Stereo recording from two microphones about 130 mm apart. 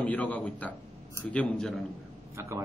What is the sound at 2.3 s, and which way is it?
Speech, 20° right (ahead or behind).